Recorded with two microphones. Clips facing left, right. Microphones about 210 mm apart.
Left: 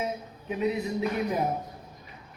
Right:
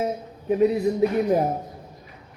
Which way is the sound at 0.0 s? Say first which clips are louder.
Right 6 dB; 40° right (ahead or behind).